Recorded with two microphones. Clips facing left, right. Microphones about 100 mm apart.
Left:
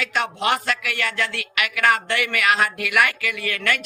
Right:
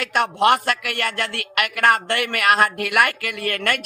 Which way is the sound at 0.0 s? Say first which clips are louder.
Right 5 dB; 55° right (ahead or behind).